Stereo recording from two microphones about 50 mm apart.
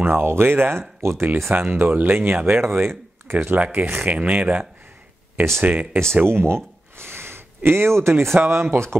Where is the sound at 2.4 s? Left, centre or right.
Right.